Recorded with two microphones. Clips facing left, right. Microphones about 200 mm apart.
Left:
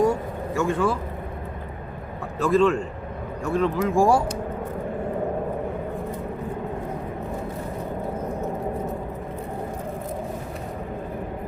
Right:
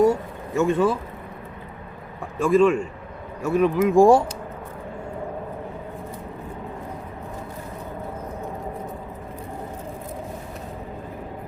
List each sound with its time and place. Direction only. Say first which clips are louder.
0.0 s vehicle: right 3 dB; 20° right (ahead or behind)
2.4 s speech: right 2 dB; 10° right (ahead or behind)
3.9 s speech: right 5 dB; 20° right (ahead or behind)